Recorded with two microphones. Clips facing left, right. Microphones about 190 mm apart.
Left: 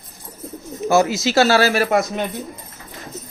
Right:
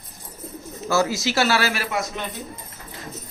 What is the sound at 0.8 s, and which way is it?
Speech, 20° left (ahead or behind).